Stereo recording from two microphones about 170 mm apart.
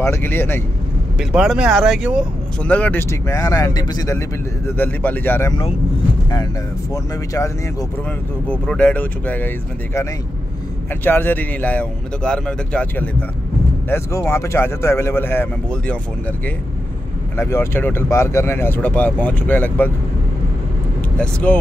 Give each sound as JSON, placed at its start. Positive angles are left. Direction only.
{"t": 0.0, "sound": "speech", "side_deg": 15}
{"t": 1.3, "sound": "speech", "side_deg": -5}
{"t": 4.6, "sound": "speech", "side_deg": 10}
{"t": 6.9, "sound": "speech", "side_deg": 20}
{"t": 8.5, "sound": "speech", "side_deg": 5}
{"t": 11.1, "sound": "speech", "side_deg": 10}
{"t": 17.4, "sound": "speech", "side_deg": 15}
{"t": 21.2, "sound": "speech", "side_deg": 10}